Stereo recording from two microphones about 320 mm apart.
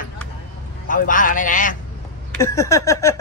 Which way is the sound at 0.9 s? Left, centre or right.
Left.